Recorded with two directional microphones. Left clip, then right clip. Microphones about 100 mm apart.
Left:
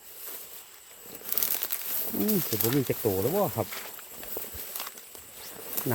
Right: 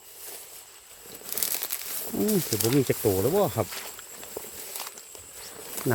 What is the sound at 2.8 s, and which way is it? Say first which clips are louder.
Speech: right 3 dB; 50° right (ahead or behind).